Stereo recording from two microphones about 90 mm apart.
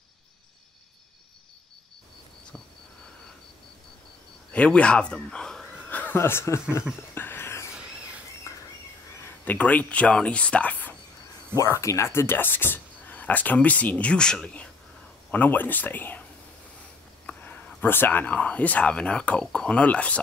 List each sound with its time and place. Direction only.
4.5 s a man's voice: 15° left (ahead or behind)
5.9 s a sound: 15° left (ahead or behind)
6.1 s speech: 30° left (ahead or behind)
7.2 s a sound: 25° left (ahead or behind)
8.5 s squawk: 35° left (ahead or behind)
9.4 s speech: 15° left (ahead or behind)
11.5 s speech: 35° left (ahead or behind); by 16.2 s 20° left (ahead or behind)
17.3 s speech: 15° left (ahead or behind)